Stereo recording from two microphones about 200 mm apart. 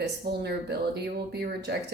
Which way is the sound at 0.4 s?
55° right (ahead or behind).